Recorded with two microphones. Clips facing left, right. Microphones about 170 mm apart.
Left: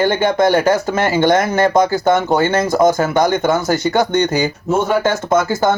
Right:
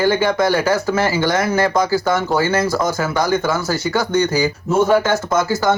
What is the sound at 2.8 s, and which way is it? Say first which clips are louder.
Speech: left 6 dB; 50° left (ahead or behind).